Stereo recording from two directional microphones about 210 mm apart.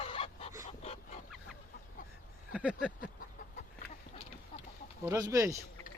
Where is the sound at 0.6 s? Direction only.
30° left (ahead or behind).